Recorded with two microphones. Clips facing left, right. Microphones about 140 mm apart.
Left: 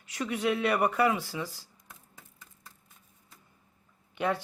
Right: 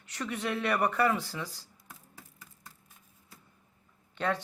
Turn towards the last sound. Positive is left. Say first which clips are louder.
# left 2 dB
turn(degrees=15)  # may be behind; listen again after turning